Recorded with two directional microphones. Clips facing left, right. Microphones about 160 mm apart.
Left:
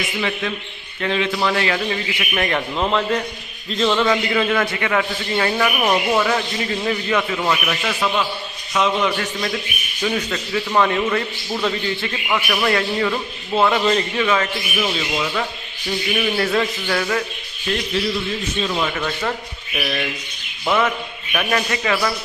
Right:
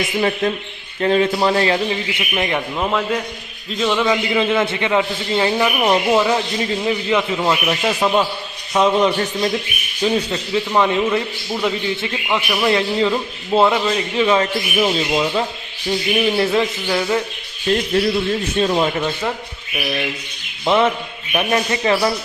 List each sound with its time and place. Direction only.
0.2 s a man's voice: 40° right (ahead or behind)
1.9 s a man's voice: 20° right (ahead or behind)
2.6 s a man's voice: 5° right (ahead or behind)
17.7 s a man's voice: 35° right (ahead or behind)
19.7 s a man's voice: 15° right (ahead or behind)
20.7 s a man's voice: 25° right (ahead or behind)